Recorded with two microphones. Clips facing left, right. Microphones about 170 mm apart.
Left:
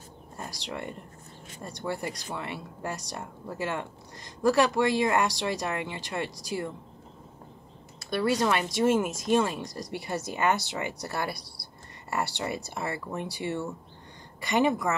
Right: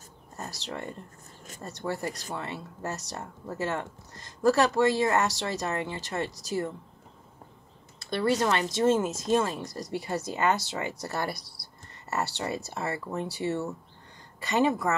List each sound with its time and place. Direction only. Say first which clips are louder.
0.4 s speech: even; 15° left (ahead or behind)
8.7 s speech: right 1 dB; 15° left (ahead or behind)